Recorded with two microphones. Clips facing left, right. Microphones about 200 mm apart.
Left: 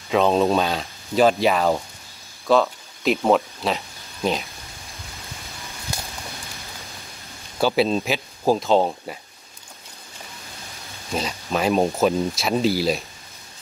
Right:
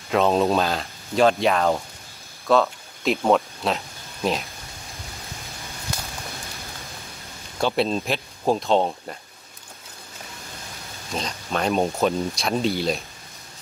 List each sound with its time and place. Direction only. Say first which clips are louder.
0.1 s speech: left 1 dB; centre (ahead or behind)
7.6 s speech: left 3 dB; 5° left (ahead or behind)
11.1 s speech: left 2 dB; 5° left (ahead or behind)